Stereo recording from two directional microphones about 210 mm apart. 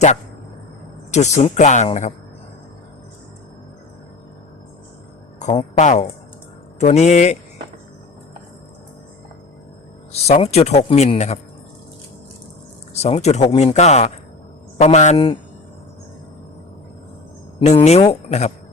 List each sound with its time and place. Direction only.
1.1 s speech: 35° left (ahead or behind)
5.4 s speech: 30° left (ahead or behind)
10.1 s speech: 30° left (ahead or behind)
12.9 s speech: 30° left (ahead or behind)
17.7 s speech: 30° left (ahead or behind)